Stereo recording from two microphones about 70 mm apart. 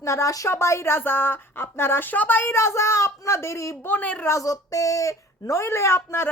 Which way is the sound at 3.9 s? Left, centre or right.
Left.